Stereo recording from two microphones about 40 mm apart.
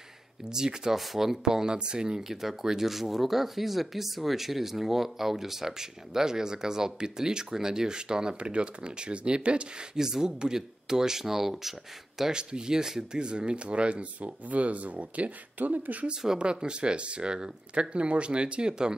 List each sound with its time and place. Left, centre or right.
0.5 s speech: centre
0.9 s speech: centre; by 9.8 s right
9.9 s speech: centre
12.2 s speech: centre; by 16.1 s right
16.3 s speech: right